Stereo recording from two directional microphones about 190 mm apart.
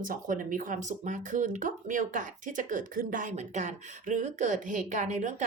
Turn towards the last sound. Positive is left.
turn(degrees=-40)  # may be behind; listen again after turning